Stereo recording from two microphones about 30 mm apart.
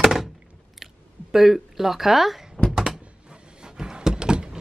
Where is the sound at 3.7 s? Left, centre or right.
Right.